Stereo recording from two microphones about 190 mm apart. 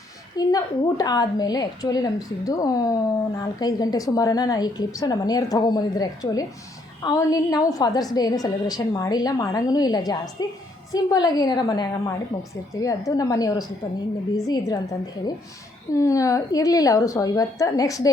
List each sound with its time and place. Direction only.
0.3 s a woman's voice: 20° left (ahead or behind)